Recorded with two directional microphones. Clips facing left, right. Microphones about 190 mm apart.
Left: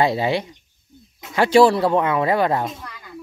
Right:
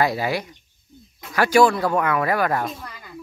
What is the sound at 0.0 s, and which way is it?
Speech, 25° left (ahead or behind).